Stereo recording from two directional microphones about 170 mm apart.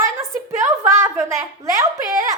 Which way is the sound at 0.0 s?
15° right (ahead or behind).